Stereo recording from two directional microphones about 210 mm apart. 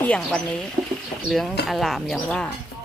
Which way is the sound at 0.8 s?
10° right (ahead or behind).